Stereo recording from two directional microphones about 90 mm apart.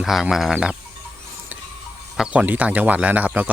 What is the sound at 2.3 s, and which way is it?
Speech, 15° right (ahead or behind).